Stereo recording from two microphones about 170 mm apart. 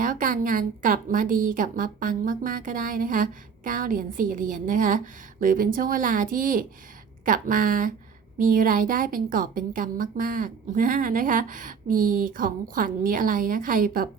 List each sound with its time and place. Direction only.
0.0 s a woman's voice: 50° right (ahead or behind)